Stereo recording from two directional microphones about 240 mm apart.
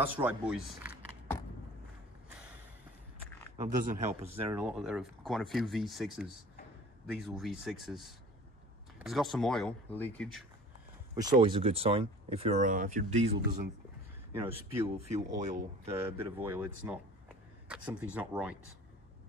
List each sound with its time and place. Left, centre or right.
0.0 s speech: centre
3.5 s speech: right
4.5 s speech: centre
11.1 s speech: centre; by 13.5 s right
15.0 s speech: right
15.9 s speech: centre